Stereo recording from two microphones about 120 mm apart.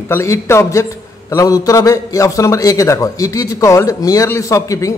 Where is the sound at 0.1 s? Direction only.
25° left (ahead or behind).